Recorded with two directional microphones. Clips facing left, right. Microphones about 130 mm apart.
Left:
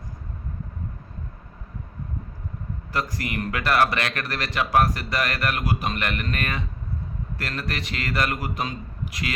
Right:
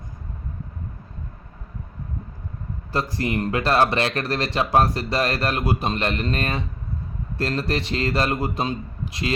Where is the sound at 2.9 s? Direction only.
30° right (ahead or behind).